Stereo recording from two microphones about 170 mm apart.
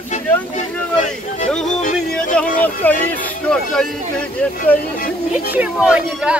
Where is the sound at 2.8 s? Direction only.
10° left (ahead or behind).